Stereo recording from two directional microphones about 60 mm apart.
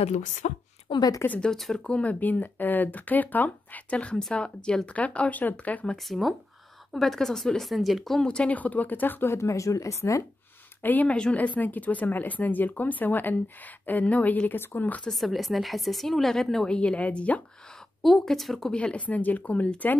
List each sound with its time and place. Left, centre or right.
1.4 s speech: centre
1.8 s speech: left
6.0 s a woman's voice: centre
8.3 s speech: left
9.3 s speech: left
10.8 s speech: left
14.6 s speech: left
15.0 s a woman's voice: centre
16.7 s speech: centre
18.0 s a woman's voice: centre
18.7 s speech: centre